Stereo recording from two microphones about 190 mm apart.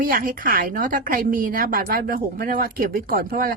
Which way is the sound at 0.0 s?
45° right (ahead or behind).